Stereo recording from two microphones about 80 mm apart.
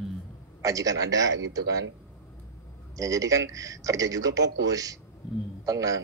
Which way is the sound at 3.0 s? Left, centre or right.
Right.